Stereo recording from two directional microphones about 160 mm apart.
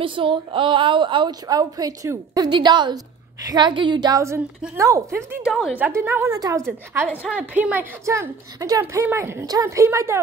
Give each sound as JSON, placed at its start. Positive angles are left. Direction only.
{"t": 0.0, "sound": "a woman's voice", "side_deg": -30}
{"t": 5.4, "sound": "a woman's voice", "side_deg": -5}
{"t": 5.9, "sound": "a woman's voice", "side_deg": -15}